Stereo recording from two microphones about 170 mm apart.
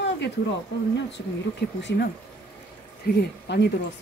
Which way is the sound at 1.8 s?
80° left.